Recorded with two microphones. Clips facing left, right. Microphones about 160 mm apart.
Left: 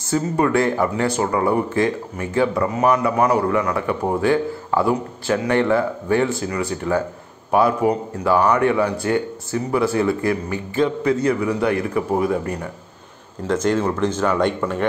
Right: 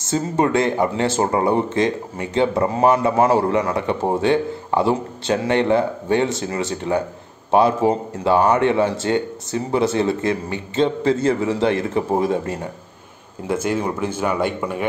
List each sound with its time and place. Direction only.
0.0 s speech: 20° right (ahead or behind)
13.5 s speech: 10° right (ahead or behind)